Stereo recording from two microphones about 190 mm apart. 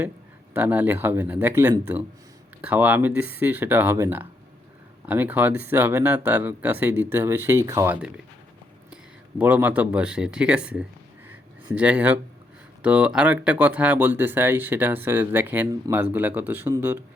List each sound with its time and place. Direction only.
0.5 s speech: 10° right (ahead or behind)
9.4 s speech: 10° right (ahead or behind)